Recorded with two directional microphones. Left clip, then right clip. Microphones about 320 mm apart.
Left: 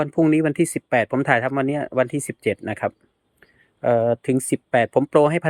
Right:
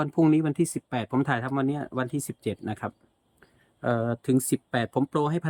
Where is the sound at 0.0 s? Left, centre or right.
Centre.